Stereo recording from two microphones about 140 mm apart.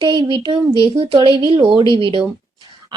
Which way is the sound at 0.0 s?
35° right (ahead or behind).